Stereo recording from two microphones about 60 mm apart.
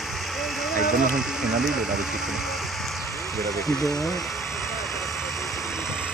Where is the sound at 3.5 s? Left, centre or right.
Left.